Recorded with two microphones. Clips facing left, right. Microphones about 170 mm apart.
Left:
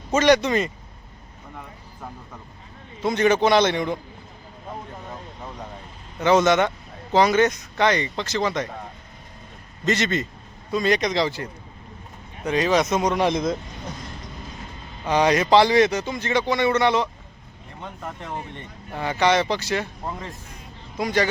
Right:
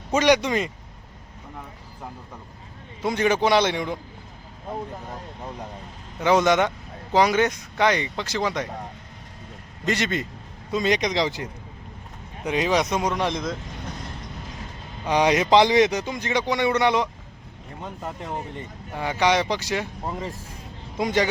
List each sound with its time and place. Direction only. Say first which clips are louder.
0.1 s speech: left 2 dB; 10° right (ahead or behind)
3.0 s speech: left 2 dB; 10° right (ahead or behind)
6.1 s speech: left 1 dB; 10° right (ahead or behind)
9.8 s speech: left 2 dB; 10° right (ahead or behind)
12.5 s speech: left 2 dB; 15° right (ahead or behind)
13.1 s speech: left 4 dB; 10° left (ahead or behind)
15.0 s speech: left 1 dB; 15° right (ahead or behind)
18.9 s speech: left 1 dB; 10° right (ahead or behind)